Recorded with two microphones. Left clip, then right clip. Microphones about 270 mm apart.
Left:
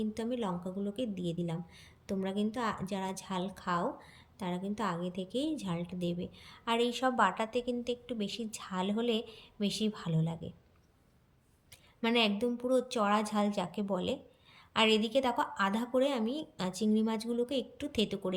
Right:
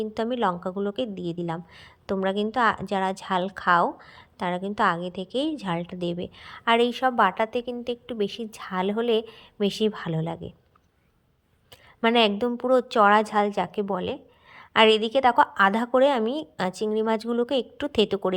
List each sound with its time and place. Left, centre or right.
0.0 s a woman's voice: centre
0.6 s a woman's voice: right
1.1 s a woman's voice: centre
12.1 s a woman's voice: centre